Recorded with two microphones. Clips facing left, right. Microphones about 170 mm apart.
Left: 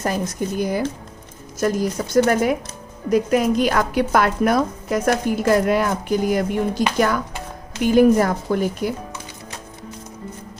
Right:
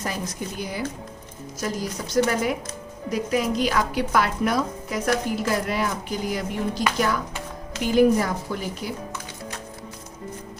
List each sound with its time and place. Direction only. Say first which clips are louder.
0.0 s speech: left 7 dB; 50° left (ahead or behind)